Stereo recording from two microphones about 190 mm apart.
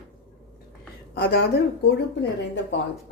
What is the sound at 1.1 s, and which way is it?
Speech, 60° left (ahead or behind).